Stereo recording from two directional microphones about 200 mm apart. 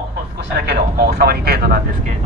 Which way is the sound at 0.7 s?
55° right (ahead or behind).